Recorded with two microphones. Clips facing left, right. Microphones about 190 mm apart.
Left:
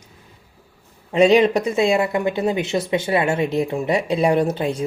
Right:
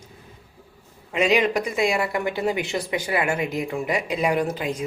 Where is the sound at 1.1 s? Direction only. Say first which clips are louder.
Left 6 dB; 30° left (ahead or behind).